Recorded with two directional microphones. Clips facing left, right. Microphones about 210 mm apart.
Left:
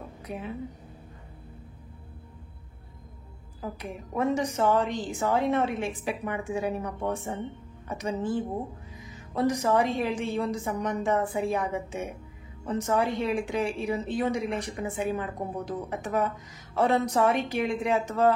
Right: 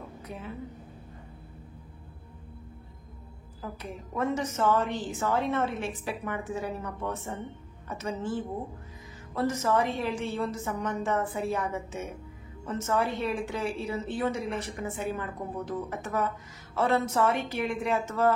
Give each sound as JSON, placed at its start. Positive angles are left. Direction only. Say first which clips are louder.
{"t": 3.7, "sound": "a woman's voice", "louder": "left 3 dB", "side_deg": 15}